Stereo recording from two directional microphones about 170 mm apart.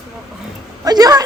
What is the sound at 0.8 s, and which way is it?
Speech, 20° right (ahead or behind).